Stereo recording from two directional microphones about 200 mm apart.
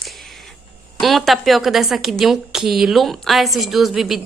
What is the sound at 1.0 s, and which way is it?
A woman's voice, centre (ahead or behind).